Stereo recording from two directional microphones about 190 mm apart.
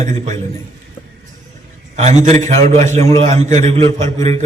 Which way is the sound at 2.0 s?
35° right (ahead or behind).